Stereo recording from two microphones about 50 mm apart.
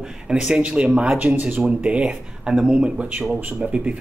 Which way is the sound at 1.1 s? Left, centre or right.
Right.